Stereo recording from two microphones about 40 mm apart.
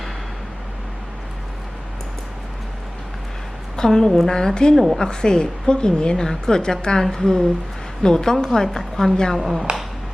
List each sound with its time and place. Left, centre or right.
3.8 s a woman's voice: centre
4.7 s a woman's voice: centre
4.9 s a woman's voice: centre
9.4 s a woman's voice: centre